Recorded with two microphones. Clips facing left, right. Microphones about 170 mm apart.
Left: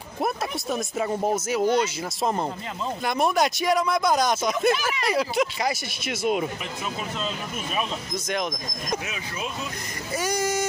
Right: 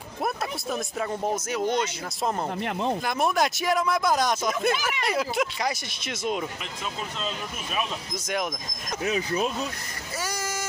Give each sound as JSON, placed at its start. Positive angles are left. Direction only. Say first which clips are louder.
{"t": 0.2, "sound": "a sound", "louder": "left 2 dB", "side_deg": 0}
{"t": 1.0, "sound": "speech", "louder": "left 4 dB", "side_deg": 5}
{"t": 8.3, "sound": "speech", "louder": "left 1 dB", "side_deg": -5}
{"t": 9.0, "sound": "speech", "louder": "right 7 dB", "side_deg": -35}
{"t": 10.1, "sound": "vehicle", "louder": "left 7 dB", "side_deg": 20}